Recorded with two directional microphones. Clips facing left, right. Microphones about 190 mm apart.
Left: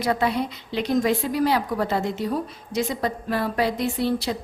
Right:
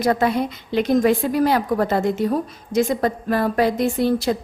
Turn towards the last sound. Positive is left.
turn(degrees=-45)  # may be behind; listen again after turning